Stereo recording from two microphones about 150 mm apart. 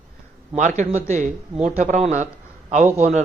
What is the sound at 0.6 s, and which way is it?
A man's voice, 50° right (ahead or behind).